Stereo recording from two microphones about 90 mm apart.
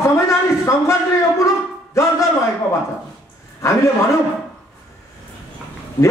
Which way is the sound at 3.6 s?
35° left (ahead or behind).